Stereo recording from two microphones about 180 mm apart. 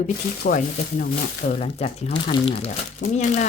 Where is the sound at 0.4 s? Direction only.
50° left (ahead or behind).